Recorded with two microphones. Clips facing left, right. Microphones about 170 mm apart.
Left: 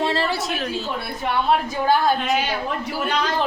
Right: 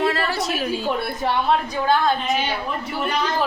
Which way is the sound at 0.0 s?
25° left (ahead or behind).